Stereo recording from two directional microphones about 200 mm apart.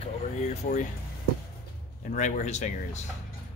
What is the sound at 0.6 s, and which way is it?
Speech, 40° left (ahead or behind).